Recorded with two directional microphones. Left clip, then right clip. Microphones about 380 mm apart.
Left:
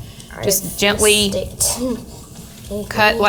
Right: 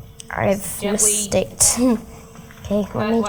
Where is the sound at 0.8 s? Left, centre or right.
Left.